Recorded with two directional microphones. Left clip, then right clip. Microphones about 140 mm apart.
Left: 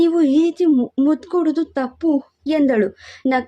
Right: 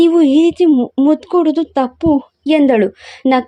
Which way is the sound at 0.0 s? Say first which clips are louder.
Right 5 dB; 20° right (ahead or behind).